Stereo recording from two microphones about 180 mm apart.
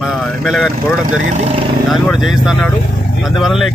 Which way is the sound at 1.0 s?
40° right (ahead or behind).